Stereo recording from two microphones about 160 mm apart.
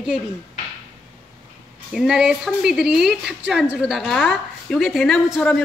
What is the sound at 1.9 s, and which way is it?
A woman's voice, 5° right (ahead or behind).